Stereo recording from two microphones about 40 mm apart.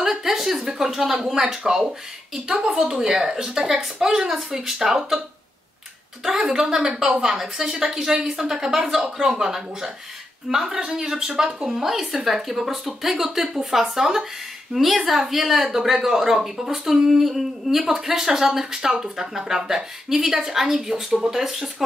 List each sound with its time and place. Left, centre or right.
0.0 s a sound: centre
1.6 s speech: right
6.2 s speech: centre